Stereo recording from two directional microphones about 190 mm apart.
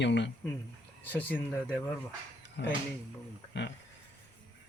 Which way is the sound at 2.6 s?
70° left (ahead or behind).